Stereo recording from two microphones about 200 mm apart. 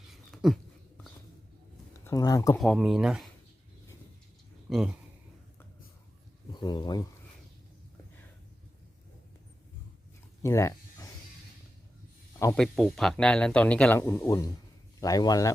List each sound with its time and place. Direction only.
0.1 s a sound: centre (ahead or behind)
2.0 s speech: 15° left (ahead or behind)
2.6 s speech: centre (ahead or behind)
4.7 s speech: centre (ahead or behind)
6.5 s speech: 20° left (ahead or behind)
10.4 s a sound: 15° left (ahead or behind)
12.4 s speech: 10° left (ahead or behind)
12.6 s speech: centre (ahead or behind); by 15.5 s 20° left (ahead or behind)